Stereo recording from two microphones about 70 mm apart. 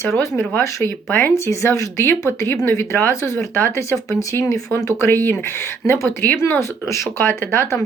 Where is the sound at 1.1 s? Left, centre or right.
Left.